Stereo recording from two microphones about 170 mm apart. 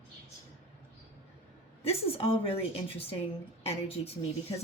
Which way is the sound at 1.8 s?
35° left (ahead or behind).